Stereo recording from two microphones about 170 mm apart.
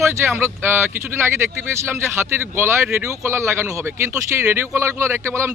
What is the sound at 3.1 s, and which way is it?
Speech, 15° right (ahead or behind).